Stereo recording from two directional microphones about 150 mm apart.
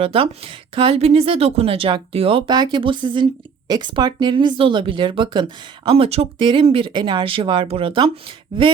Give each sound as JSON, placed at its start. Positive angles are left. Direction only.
{"t": 0.0, "sound": "speech", "side_deg": -40}